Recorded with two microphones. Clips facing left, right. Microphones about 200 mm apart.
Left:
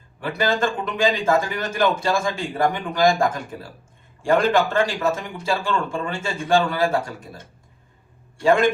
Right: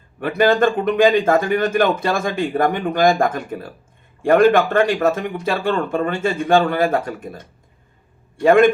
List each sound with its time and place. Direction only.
0.2 s speech: 55° right (ahead or behind)